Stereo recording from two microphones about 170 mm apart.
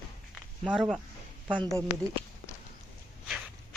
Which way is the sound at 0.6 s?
Centre (ahead or behind).